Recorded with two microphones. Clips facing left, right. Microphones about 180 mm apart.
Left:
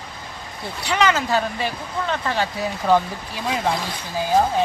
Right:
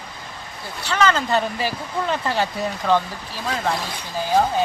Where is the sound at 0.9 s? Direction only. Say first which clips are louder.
Even; 15° left (ahead or behind).